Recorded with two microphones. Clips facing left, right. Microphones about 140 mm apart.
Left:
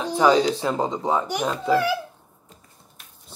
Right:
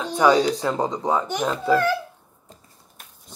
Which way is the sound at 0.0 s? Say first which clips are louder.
Even; 10° left (ahead or behind).